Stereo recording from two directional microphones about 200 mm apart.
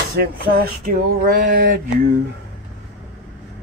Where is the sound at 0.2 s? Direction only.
50° right (ahead or behind).